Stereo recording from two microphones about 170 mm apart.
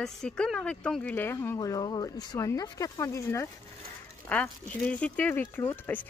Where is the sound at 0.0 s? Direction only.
5° left (ahead or behind).